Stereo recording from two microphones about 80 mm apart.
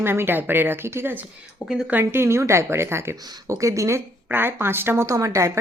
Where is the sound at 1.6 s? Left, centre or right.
Left.